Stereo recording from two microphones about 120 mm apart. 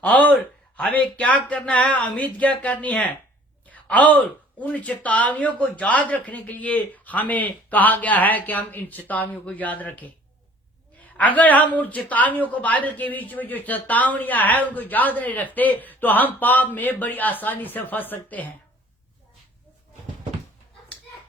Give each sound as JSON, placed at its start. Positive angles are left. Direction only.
{"t": 0.0, "sound": "speech", "side_deg": 10}
{"t": 11.2, "sound": "speech", "side_deg": 15}